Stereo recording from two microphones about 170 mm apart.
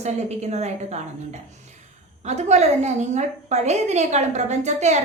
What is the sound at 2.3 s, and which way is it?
A woman's voice, 40° right (ahead or behind).